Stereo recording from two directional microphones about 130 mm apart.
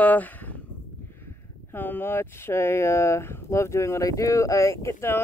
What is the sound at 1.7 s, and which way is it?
Speech, 15° left (ahead or behind).